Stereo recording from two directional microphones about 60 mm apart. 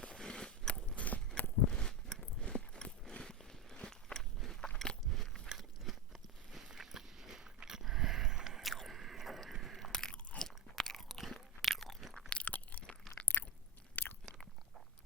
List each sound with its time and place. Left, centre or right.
0.2 s biting: centre
1.7 s a sound: centre
3.1 s walk: centre
4.8 s biting: centre
5.5 s crunch: centre
6.5 s biting: centre
8.7 s chewing: centre
9.9 s crunch: centre
11.6 s chewing: centre
12.3 s chewing: left